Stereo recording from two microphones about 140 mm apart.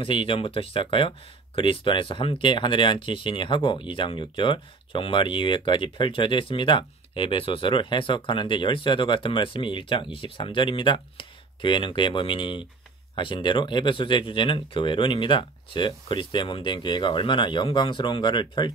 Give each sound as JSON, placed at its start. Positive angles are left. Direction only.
{"t": 0.0, "sound": "speech", "side_deg": 40}